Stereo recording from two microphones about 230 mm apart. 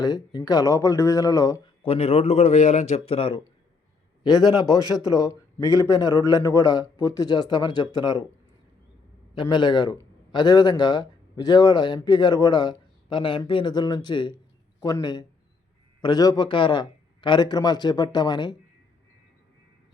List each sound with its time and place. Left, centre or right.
0.0 s a man's voice: centre
1.9 s a man's voice: left
5.1 s a man's voice: centre
9.3 s a man's voice: centre